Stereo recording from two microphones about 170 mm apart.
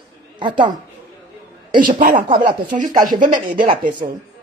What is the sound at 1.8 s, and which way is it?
Speech, 50° right (ahead or behind).